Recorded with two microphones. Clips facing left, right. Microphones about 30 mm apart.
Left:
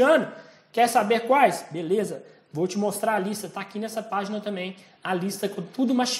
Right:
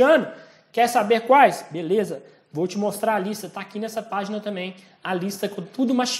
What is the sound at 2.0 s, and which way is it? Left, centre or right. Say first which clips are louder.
Speech: right 3 dB; right.